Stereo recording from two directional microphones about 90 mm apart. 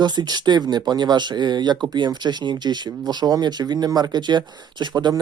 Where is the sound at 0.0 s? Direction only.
50° right (ahead or behind).